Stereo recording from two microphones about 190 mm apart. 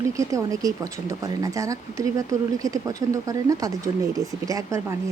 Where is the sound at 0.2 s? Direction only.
15° right (ahead or behind).